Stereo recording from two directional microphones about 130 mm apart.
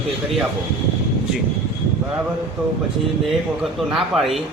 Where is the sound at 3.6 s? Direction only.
Centre (ahead or behind).